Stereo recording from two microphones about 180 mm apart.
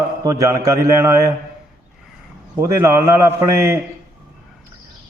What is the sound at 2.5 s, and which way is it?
A man's voice, 15° right (ahead or behind).